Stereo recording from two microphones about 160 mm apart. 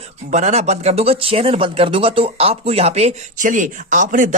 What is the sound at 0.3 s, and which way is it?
Speech, 45° right (ahead or behind).